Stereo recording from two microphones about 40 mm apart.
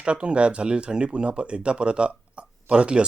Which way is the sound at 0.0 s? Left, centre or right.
Right.